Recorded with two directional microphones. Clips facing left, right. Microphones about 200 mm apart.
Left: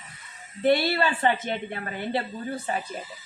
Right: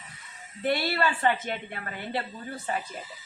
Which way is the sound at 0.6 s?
25° left (ahead or behind).